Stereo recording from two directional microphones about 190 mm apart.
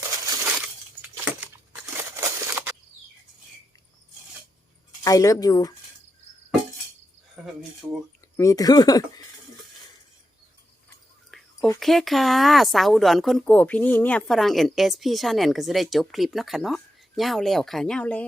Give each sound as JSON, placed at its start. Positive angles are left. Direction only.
{"t": 0.4, "sound": "crumpling", "side_deg": -5}
{"t": 5.0, "sound": "speech", "side_deg": 15}
{"t": 7.4, "sound": "a sound", "side_deg": 0}
{"t": 7.8, "sound": "speech", "side_deg": -5}
{"t": 8.4, "sound": "speech", "side_deg": 15}
{"t": 10.8, "sound": "whispering", "side_deg": 5}
{"t": 11.8, "sound": "speech", "side_deg": 0}